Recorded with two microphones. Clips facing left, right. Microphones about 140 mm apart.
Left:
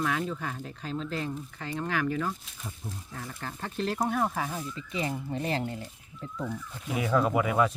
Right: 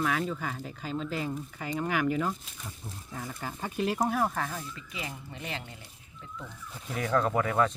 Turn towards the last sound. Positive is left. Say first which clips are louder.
# left 1 dB
turn(degrees=10)  # may be behind; listen again after turning